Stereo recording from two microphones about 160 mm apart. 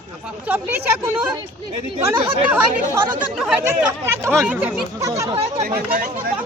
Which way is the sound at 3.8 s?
15° right (ahead or behind).